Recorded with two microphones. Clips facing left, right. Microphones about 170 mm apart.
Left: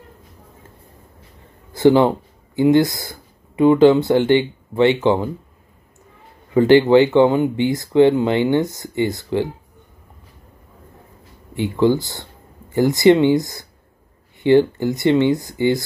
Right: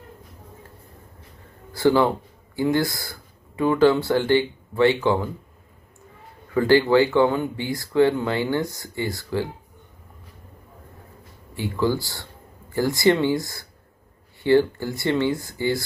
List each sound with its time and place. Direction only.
1.7 s speech: 20° left (ahead or behind)
6.5 s speech: 20° left (ahead or behind)
11.5 s speech: 20° left (ahead or behind)